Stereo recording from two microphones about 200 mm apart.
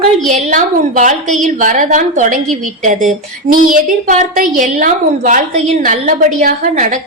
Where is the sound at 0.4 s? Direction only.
40° right (ahead or behind).